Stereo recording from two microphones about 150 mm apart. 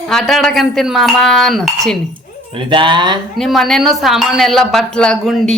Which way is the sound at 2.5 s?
35° right (ahead or behind).